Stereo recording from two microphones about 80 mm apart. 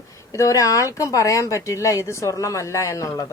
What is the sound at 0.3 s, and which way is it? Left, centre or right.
A woman's voice, left.